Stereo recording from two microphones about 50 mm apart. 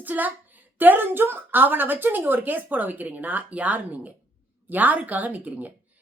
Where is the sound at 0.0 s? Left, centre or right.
Right.